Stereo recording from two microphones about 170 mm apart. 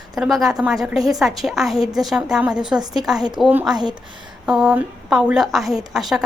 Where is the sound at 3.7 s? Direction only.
25° right (ahead or behind).